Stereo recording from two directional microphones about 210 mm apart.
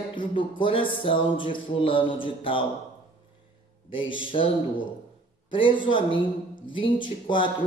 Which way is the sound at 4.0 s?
25° left (ahead or behind).